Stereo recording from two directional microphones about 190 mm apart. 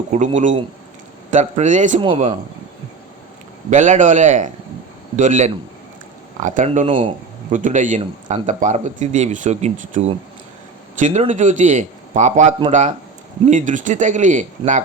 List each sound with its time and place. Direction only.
0.1 s speech: 40° right (ahead or behind)
2.0 s speech: 25° right (ahead or behind)
3.7 s speech: 40° right (ahead or behind)
6.8 s speech: 25° right (ahead or behind)
7.5 s speech: 40° right (ahead or behind)